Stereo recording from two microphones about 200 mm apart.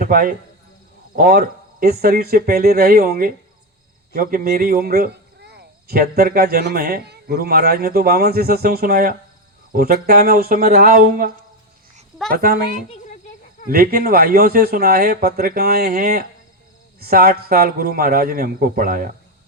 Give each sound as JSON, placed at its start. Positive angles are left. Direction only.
{"t": 0.0, "sound": "speech", "side_deg": -45}
{"t": 12.3, "sound": "speech", "side_deg": -50}
{"t": 13.7, "sound": "speech", "side_deg": -50}